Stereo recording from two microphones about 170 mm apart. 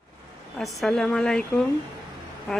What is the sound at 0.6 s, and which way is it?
Speech, centre (ahead or behind).